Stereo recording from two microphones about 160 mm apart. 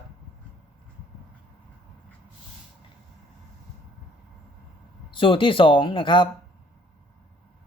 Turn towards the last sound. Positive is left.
turn(degrees=30)  # may be behind; listen again after turning